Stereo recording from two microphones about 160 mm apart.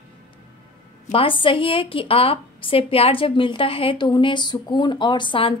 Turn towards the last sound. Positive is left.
turn(degrees=30)  # may be behind; listen again after turning